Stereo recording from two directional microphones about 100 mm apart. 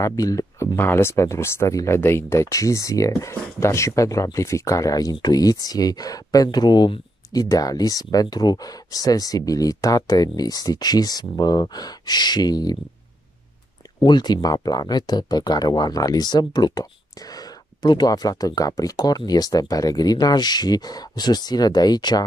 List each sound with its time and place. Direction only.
0.0 s speech: 35° left (ahead or behind)
0.7 s speech: 25° left (ahead or behind); by 12.7 s 40° left (ahead or behind)
14.0 s speech: 45° left (ahead or behind)